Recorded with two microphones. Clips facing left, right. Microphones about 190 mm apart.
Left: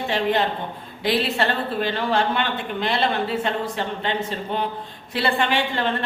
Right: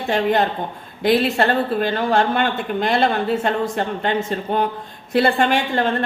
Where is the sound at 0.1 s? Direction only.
50° right (ahead or behind).